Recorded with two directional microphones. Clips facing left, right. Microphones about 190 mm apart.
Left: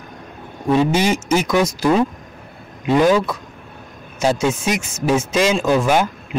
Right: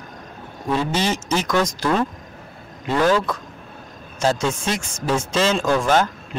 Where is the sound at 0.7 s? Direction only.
15° left (ahead or behind).